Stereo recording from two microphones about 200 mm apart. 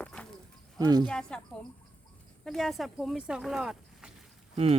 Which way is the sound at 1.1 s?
5° left (ahead or behind).